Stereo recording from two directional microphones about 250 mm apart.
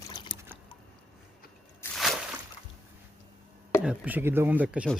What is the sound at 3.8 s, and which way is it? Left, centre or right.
Speech, centre.